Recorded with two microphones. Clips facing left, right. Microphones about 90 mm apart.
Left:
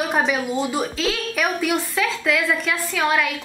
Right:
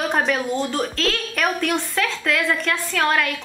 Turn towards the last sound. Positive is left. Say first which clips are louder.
# even
turn(degrees=5)  # may be behind; listen again after turning